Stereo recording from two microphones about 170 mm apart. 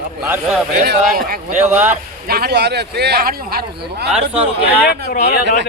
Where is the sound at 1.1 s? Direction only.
60° right (ahead or behind).